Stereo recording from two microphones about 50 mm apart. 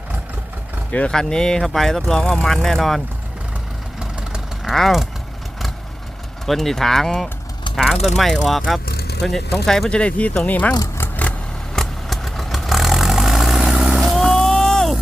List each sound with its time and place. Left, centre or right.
0.9 s speech: left
1.1 s speech: centre
4.0 s vehicle: centre
4.7 s speech: centre
6.4 s speech: centre; by 10.8 s left
11.7 s vehicle: centre
14.1 s vehicle: centre